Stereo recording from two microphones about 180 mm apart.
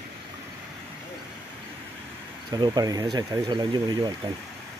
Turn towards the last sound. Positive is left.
turn(degrees=-25)  # may be behind; listen again after turning